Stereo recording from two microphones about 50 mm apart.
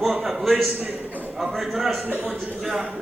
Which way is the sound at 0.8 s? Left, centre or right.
Right.